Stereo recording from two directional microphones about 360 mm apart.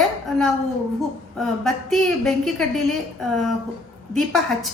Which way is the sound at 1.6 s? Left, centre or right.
Centre.